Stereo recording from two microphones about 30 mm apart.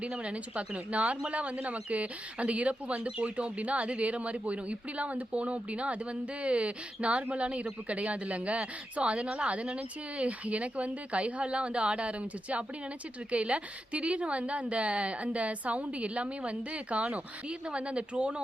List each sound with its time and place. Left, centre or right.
0.0 s speech: right
17.5 s speech: right